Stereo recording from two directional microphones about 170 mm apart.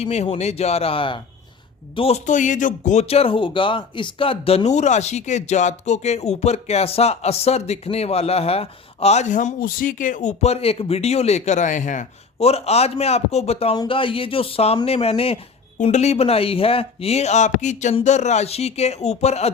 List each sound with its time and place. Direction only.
0.0 s speech: 40° left (ahead or behind)